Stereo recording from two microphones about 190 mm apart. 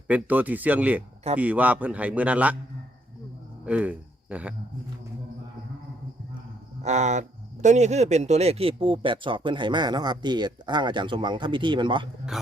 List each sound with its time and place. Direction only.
0.1 s a man's voice: 10° right (ahead or behind)
3.7 s speech: 5° right (ahead or behind)
6.8 s speech: 35° right (ahead or behind)